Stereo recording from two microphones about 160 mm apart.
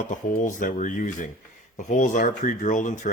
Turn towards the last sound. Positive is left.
turn(degrees=55)  # may be behind; listen again after turning